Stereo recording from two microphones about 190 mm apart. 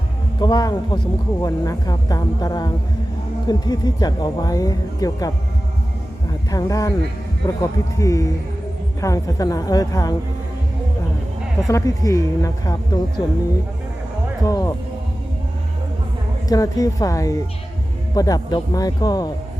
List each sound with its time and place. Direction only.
0.3 s speech: 20° left (ahead or behind)
6.5 s a woman's voice: 20° left (ahead or behind)
11.7 s a woman's voice: 15° left (ahead or behind)
14.4 s a woman's voice: 20° left (ahead or behind)
16.5 s a woman's voice: 20° left (ahead or behind)